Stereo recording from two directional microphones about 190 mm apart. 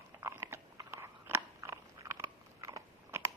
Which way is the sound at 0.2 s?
15° right (ahead or behind).